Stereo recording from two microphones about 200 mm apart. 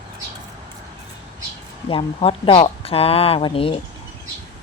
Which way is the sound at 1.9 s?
25° left (ahead or behind).